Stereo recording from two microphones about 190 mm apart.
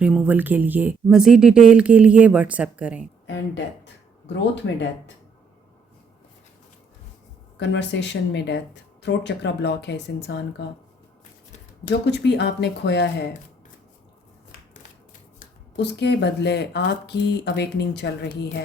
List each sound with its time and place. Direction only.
0.0 s speech: 5° right (ahead or behind)
4.3 s speech: 70° left (ahead or behind)
7.6 s speech: 70° left (ahead or behind)
12.0 s speech: 65° left (ahead or behind)
15.7 s speech: 65° left (ahead or behind)